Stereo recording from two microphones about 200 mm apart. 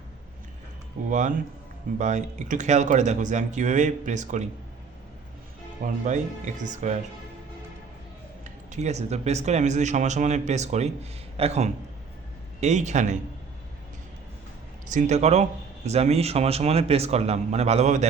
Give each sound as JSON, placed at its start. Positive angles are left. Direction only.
{"t": 2.0, "sound": "speech", "side_deg": -35}
{"t": 5.8, "sound": "speech", "side_deg": -40}
{"t": 8.7, "sound": "speech", "side_deg": -35}
{"t": 14.8, "sound": "speech", "side_deg": -35}